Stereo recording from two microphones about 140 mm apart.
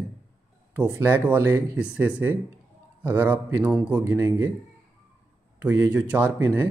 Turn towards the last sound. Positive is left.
turn(degrees=-15)  # may be behind; listen again after turning